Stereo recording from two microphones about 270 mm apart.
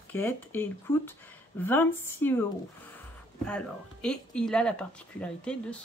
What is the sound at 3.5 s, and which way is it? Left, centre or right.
Speech, centre.